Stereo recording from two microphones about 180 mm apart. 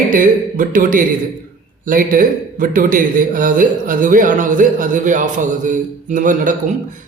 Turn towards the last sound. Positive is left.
turn(degrees=-45)  # may be behind; listen again after turning